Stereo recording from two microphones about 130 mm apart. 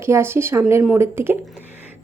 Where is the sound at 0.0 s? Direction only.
20° right (ahead or behind).